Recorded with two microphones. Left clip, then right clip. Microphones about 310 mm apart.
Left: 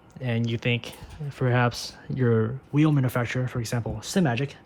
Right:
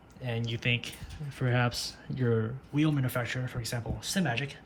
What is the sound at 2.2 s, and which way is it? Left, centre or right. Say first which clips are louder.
Speech: left 6 dB; right.